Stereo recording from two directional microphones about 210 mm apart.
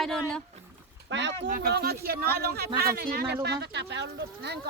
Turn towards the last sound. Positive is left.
turn(degrees=-55)  # may be behind; listen again after turning